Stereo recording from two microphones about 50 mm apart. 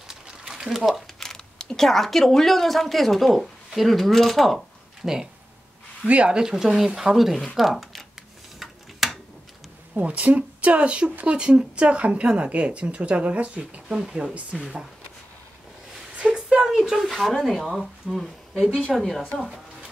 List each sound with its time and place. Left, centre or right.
0.1 s a sound: centre
1.2 s speech: centre
5.0 s speech: centre
6.0 s speech: right
6.5 s speech: centre
8.5 s tick-tock: centre
9.9 s speech: right
16.2 s a sound: centre
16.6 s speech: centre
19.4 s music: centre